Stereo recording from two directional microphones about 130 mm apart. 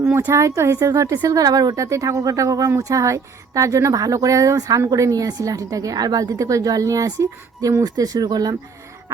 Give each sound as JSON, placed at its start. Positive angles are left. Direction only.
{"t": 0.0, "sound": "speech", "side_deg": -15}